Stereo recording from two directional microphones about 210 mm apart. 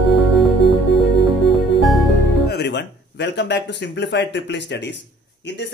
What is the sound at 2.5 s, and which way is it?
Speech, 55° left (ahead or behind).